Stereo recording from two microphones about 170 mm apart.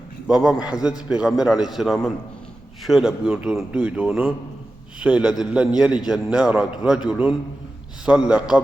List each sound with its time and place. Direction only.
0.3 s a man's voice: 5° right (ahead or behind)